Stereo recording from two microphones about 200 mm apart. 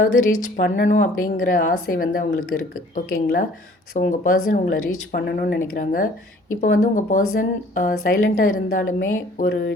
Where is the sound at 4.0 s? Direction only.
40° left (ahead or behind).